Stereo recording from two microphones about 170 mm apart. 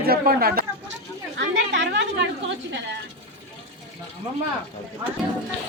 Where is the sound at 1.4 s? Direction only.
90° right.